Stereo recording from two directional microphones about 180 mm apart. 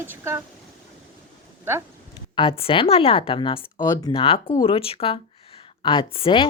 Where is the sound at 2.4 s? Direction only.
30° left (ahead or behind).